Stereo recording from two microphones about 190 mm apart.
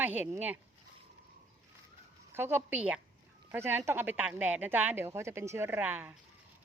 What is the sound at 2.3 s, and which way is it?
Speech, 10° right (ahead or behind).